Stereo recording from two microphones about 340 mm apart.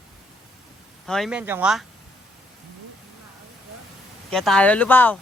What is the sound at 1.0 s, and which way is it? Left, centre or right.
Speech, centre.